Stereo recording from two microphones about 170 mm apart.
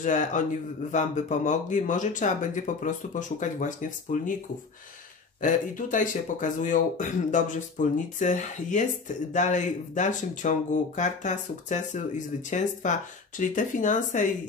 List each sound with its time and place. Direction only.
0.0 s speech: 45° left (ahead or behind)
5.4 s speech: 50° left (ahead or behind)